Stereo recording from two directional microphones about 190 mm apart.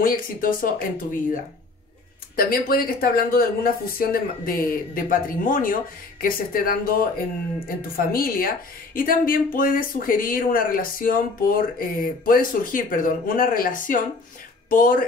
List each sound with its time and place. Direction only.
0.0 s speech: 50° left (ahead or behind)
2.3 s speech: 50° left (ahead or behind)